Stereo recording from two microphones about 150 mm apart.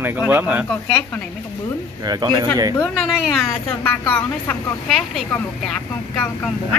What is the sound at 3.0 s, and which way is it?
A woman's voice, centre (ahead or behind).